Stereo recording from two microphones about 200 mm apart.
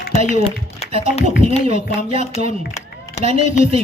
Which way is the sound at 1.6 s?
30° right (ahead or behind).